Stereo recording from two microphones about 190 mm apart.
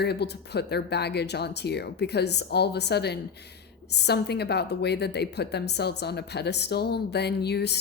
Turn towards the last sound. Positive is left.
turn(degrees=60)  # may be behind; listen again after turning